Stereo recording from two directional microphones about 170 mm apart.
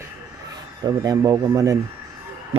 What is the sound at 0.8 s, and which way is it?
Speech, 25° right (ahead or behind).